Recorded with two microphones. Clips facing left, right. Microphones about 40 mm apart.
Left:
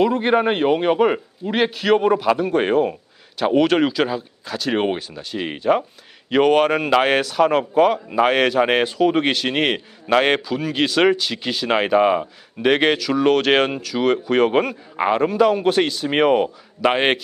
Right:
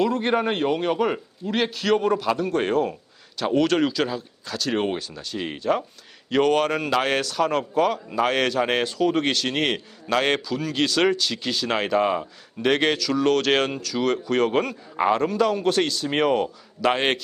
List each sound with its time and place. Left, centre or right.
0.0 s a man's voice: centre